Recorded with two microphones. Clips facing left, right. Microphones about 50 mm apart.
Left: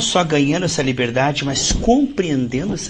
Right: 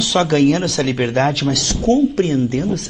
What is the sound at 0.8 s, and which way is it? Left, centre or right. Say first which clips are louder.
Speech: even; left.